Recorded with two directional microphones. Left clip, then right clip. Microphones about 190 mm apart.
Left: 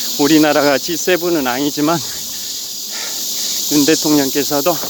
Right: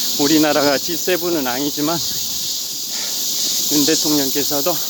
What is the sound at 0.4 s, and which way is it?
Speech, 15° left (ahead or behind).